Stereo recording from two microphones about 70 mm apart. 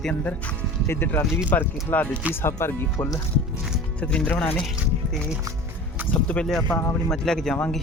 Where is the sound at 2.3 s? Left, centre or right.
Left.